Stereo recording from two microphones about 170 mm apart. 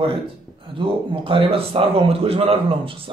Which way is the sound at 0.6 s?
30° right (ahead or behind).